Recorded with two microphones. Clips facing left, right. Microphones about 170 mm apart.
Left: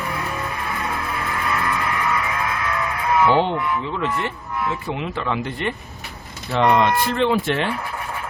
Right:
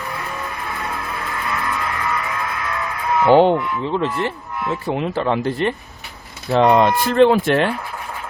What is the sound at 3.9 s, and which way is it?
Speech, 35° right (ahead or behind).